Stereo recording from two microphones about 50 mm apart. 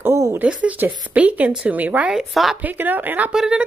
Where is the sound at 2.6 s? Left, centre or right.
Right.